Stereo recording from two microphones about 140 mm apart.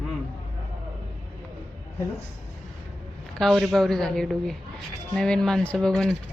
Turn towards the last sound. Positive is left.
turn(degrees=5)  # may be behind; listen again after turning